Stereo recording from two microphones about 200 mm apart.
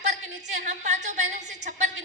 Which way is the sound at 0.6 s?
35° right (ahead or behind).